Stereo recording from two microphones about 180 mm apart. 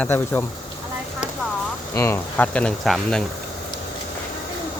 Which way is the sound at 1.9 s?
15° left (ahead or behind).